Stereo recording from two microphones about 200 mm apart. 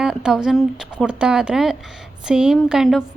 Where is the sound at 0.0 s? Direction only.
5° right (ahead or behind).